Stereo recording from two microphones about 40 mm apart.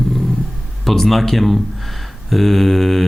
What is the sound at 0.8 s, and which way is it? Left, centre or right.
Speech, centre.